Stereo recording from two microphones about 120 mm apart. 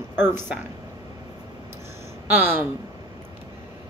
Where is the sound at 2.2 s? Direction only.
20° right (ahead or behind).